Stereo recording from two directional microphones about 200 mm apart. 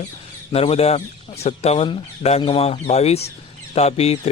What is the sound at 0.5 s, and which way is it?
A man's voice, 30° left (ahead or behind).